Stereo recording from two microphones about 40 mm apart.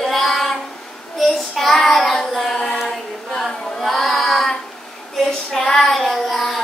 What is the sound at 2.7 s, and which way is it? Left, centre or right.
Child singing, centre.